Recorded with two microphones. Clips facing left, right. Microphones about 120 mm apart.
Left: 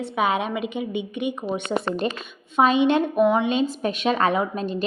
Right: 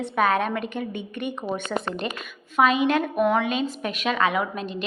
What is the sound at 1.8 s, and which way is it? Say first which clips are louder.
A woman's voice: left 4 dB; 35° left (ahead or behind).